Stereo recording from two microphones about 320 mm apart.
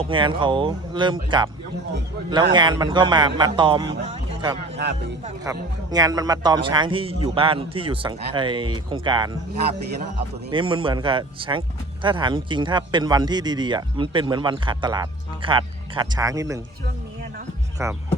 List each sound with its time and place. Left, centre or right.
0.0 s speech: centre
10.5 s speech: centre
17.8 s speech: centre